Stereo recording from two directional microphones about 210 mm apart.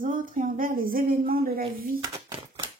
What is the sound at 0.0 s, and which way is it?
A woman's voice, 40° right (ahead or behind).